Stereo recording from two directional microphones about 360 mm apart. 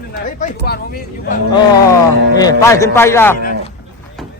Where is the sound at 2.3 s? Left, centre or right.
Centre.